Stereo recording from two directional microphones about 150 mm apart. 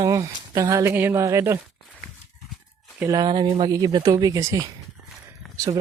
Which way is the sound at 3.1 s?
30° right (ahead or behind).